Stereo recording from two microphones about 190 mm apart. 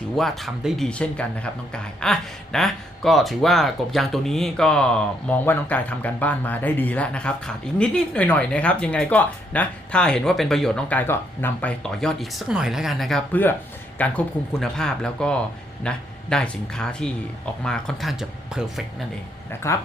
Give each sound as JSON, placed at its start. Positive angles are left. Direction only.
{"t": 0.2, "sound": "speech", "side_deg": 0}
{"t": 19.5, "sound": "speech", "side_deg": 15}